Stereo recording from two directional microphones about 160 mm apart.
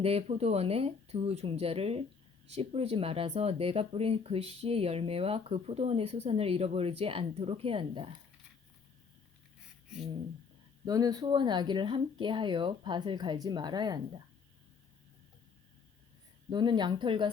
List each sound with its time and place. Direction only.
0.0 s speech: 40° right (ahead or behind)
10.8 s speech: 25° right (ahead or behind)
16.5 s speech: 30° right (ahead or behind)